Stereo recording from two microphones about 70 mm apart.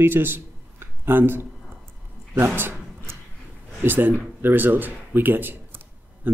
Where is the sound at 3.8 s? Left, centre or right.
Right.